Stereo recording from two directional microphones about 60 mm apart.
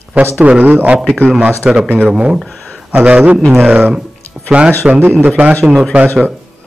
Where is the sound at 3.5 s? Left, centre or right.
Right.